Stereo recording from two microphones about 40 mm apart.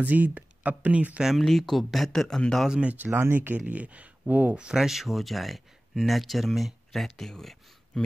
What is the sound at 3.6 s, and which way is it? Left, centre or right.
Speech, right.